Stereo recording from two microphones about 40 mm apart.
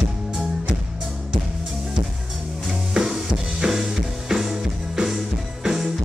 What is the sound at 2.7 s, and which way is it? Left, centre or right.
Music, centre.